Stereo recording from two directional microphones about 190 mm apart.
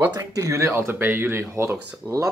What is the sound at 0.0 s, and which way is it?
Speech, 15° right (ahead or behind).